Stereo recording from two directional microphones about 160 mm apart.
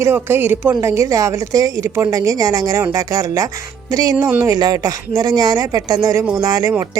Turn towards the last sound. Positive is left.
turn(degrees=-25)  # may be behind; listen again after turning